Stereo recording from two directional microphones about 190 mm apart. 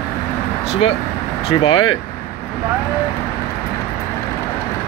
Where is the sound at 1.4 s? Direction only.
30° left (ahead or behind).